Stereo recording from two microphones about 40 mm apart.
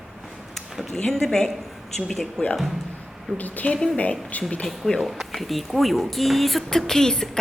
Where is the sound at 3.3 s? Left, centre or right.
Left.